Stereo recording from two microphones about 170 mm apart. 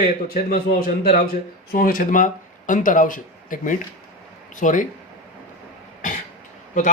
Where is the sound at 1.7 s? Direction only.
55° left (ahead or behind).